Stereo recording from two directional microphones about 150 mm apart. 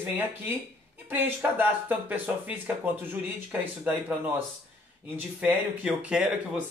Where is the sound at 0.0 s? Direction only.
15° right (ahead or behind).